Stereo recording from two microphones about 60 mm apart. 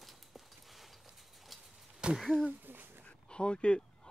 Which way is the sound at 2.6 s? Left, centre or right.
Right.